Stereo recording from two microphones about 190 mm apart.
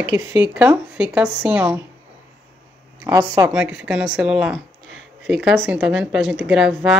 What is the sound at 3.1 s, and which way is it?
Speech, 20° right (ahead or behind).